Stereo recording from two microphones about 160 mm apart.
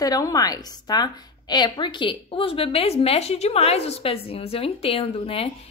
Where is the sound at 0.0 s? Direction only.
20° left (ahead or behind).